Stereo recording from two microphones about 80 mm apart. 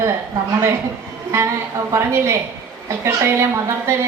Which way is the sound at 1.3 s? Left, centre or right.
Right.